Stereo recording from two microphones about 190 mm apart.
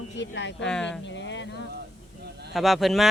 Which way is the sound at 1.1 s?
70° left (ahead or behind).